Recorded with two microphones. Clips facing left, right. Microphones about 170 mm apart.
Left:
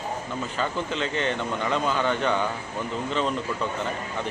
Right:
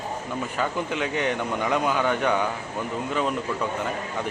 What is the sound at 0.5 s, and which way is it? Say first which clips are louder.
Speech: right 1 dB; 10° right (ahead or behind).